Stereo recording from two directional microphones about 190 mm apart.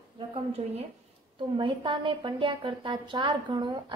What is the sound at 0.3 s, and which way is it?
A woman's voice, 30° right (ahead or behind).